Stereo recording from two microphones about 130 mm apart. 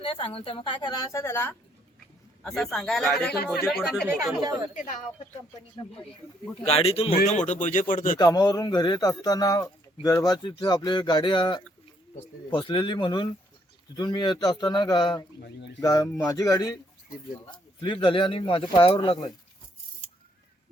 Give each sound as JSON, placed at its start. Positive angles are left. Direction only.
{"t": 0.0, "sound": "a man's voice", "side_deg": 40}
{"t": 1.2, "sound": "speech", "side_deg": 20}
{"t": 2.4, "sound": "a man's voice", "side_deg": 5}
{"t": 4.4, "sound": "speech", "side_deg": -30}
{"t": 4.7, "sound": "speech", "side_deg": 90}
{"t": 6.7, "sound": "speech", "side_deg": 50}
{"t": 8.2, "sound": "a man's voice", "side_deg": 30}
{"t": 17.7, "sound": "a man's voice", "side_deg": 35}